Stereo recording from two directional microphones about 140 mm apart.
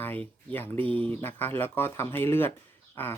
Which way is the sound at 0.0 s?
15° left (ahead or behind).